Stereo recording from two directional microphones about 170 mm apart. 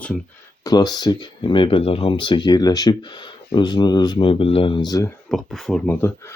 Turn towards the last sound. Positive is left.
turn(degrees=15)  # may be behind; listen again after turning